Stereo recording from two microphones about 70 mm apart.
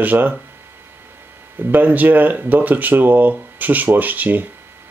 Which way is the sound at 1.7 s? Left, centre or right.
Right.